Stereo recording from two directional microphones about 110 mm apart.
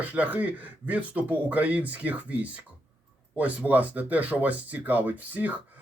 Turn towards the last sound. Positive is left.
turn(degrees=-15)  # may be behind; listen again after turning